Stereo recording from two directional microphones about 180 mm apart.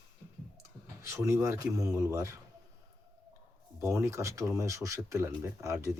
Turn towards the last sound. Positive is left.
turn(degrees=-15)  # may be behind; listen again after turning